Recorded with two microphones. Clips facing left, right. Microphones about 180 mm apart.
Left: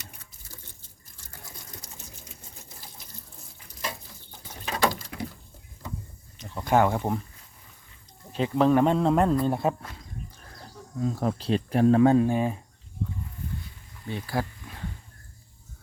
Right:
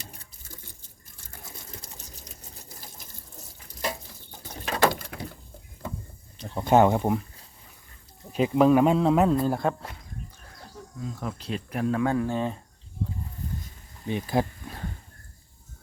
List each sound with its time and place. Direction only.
1.8 s sewing machine: 35° right (ahead or behind)
4.8 s a sound: 60° right (ahead or behind)
6.4 s a sound: 25° right (ahead or behind)
8.3 s speech: 10° right (ahead or behind)
11.0 s speech: 40° left (ahead or behind); by 12.5 s 10° left (ahead or behind)
14.1 s speech: 20° right (ahead or behind)